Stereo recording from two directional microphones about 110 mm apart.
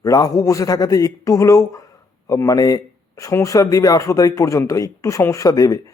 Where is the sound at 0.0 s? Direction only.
30° left (ahead or behind).